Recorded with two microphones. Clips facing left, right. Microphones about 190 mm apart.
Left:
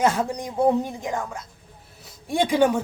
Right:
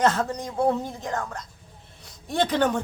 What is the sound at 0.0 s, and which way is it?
A woman's voice, 10° left (ahead or behind).